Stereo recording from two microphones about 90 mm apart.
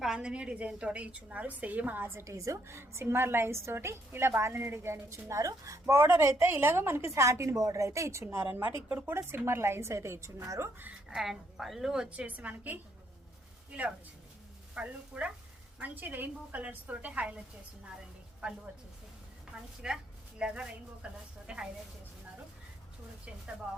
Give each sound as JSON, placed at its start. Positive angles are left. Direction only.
{"t": 0.0, "sound": "a woman's voice", "side_deg": -10}
{"t": 11.1, "sound": "a woman's voice", "side_deg": -5}
{"t": 19.5, "sound": "a woman's voice", "side_deg": -10}